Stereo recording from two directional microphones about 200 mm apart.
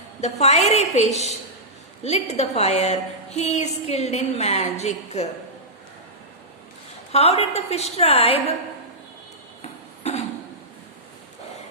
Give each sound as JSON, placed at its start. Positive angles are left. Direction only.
{"t": 0.2, "sound": "a woman's voice", "side_deg": 35}
{"t": 7.1, "sound": "a woman's voice", "side_deg": 30}
{"t": 9.6, "sound": "a sound", "side_deg": 30}